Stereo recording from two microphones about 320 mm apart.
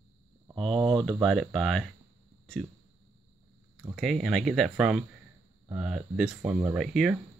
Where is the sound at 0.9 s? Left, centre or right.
Centre.